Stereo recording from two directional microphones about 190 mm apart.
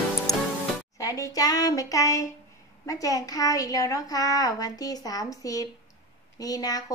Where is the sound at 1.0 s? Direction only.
15° left (ahead or behind).